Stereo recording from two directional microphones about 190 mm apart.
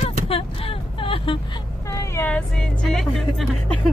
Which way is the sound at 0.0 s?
30° left (ahead or behind).